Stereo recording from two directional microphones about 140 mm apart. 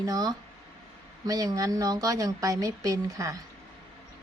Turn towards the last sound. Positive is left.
turn(degrees=-25)  # may be behind; listen again after turning